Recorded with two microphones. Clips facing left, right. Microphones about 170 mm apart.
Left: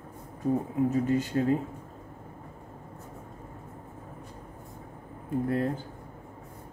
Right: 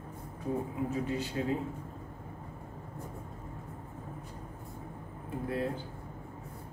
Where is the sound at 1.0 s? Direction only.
45° left (ahead or behind).